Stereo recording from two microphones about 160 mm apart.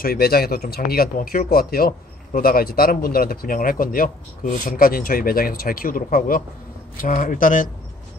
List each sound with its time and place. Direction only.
0.0 s speech: 70° left (ahead or behind)